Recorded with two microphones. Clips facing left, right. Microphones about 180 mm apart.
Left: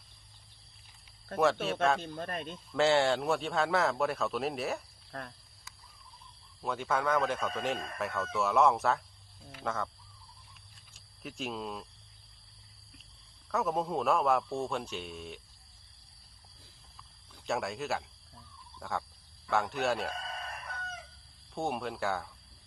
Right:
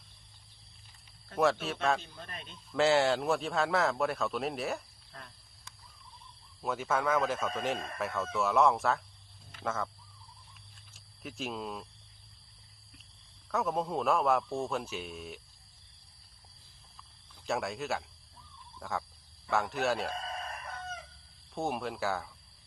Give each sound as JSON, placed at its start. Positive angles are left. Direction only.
{"t": 1.6, "sound": "speech", "side_deg": 0}
{"t": 2.0, "sound": "speech", "side_deg": 50}
{"t": 2.7, "sound": "speech", "side_deg": 0}
{"t": 5.1, "sound": "speech", "side_deg": 60}
{"t": 5.7, "sound": "a sound", "side_deg": 5}
{"t": 6.6, "sound": "speech", "side_deg": 0}
{"t": 10.9, "sound": "speech", "side_deg": 0}
{"t": 13.5, "sound": "speech", "side_deg": 0}
{"t": 17.4, "sound": "speech", "side_deg": 0}
{"t": 18.8, "sound": "a sound", "side_deg": 0}
{"t": 19.5, "sound": "speech", "side_deg": 0}
{"t": 21.5, "sound": "speech", "side_deg": 0}